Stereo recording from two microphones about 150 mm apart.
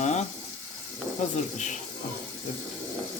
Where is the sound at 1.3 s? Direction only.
55° left (ahead or behind).